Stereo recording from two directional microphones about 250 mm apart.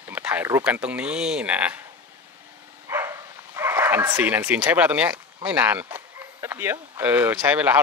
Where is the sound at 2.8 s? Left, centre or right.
Centre.